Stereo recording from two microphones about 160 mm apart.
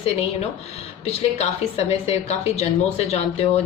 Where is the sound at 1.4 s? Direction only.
40° left (ahead or behind).